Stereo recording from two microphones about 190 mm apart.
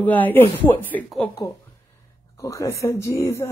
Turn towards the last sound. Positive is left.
turn(degrees=15)  # may be behind; listen again after turning